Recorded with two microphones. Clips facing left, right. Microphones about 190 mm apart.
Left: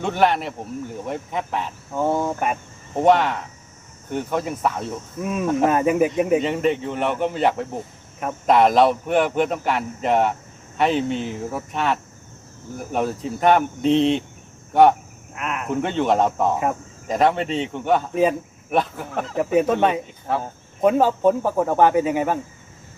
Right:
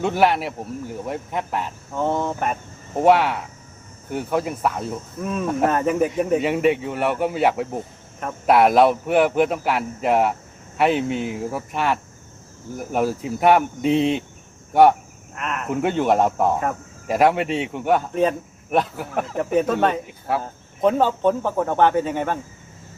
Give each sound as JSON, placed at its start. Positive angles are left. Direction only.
{"t": 0.0, "sound": "speech", "side_deg": -5}
{"t": 2.0, "sound": "speech", "side_deg": 10}
{"t": 2.9, "sound": "speech", "side_deg": -5}
{"t": 5.2, "sound": "speech", "side_deg": 10}
{"t": 5.5, "sound": "speech", "side_deg": -5}
{"t": 5.7, "sound": "speech", "side_deg": 10}
{"t": 6.4, "sound": "speech", "side_deg": -5}
{"t": 15.4, "sound": "speech", "side_deg": 5}
{"t": 15.7, "sound": "speech", "side_deg": -5}
{"t": 18.1, "sound": "speech", "side_deg": 10}
{"t": 18.7, "sound": "speech", "side_deg": -5}
{"t": 20.4, "sound": "speech", "side_deg": 10}